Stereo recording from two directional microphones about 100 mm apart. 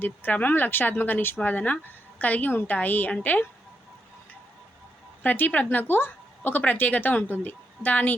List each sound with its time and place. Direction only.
0.0 s speech: 20° left (ahead or behind)
5.2 s speech: 15° left (ahead or behind)